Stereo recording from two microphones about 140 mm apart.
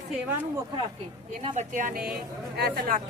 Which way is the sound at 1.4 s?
65° right (ahead or behind).